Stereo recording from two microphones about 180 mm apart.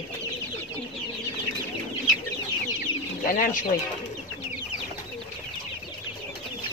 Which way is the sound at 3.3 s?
45° left (ahead or behind).